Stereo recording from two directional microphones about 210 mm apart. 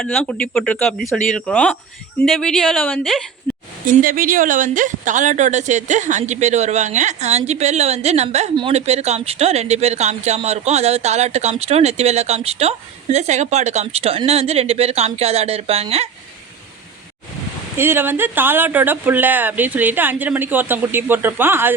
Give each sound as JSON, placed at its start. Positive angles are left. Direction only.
{"t": 0.0, "sound": "speech", "side_deg": 0}
{"t": 3.5, "sound": "a sound", "side_deg": 10}
{"t": 3.8, "sound": "speech", "side_deg": -40}
{"t": 17.7, "sound": "speech", "side_deg": -10}